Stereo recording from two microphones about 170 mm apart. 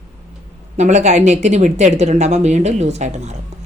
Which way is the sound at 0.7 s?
40° right (ahead or behind).